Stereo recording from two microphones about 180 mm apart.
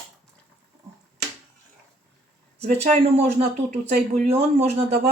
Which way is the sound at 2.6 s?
35° right (ahead or behind).